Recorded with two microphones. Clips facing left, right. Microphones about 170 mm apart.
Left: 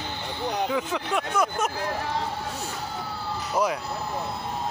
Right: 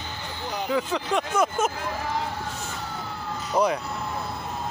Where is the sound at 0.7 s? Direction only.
10° left (ahead or behind).